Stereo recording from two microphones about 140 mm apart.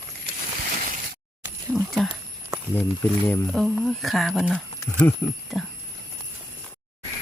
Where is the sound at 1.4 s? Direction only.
Centre (ahead or behind).